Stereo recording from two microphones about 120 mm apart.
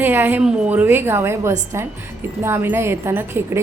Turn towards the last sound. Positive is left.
turn(degrees=-20)  # may be behind; listen again after turning